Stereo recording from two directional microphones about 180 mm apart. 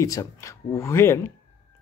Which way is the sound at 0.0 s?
20° left (ahead or behind).